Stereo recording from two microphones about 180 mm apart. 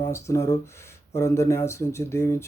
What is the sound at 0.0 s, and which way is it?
Speech, 15° left (ahead or behind).